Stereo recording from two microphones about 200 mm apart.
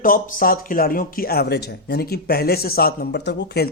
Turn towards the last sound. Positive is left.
turn(degrees=55)  # may be behind; listen again after turning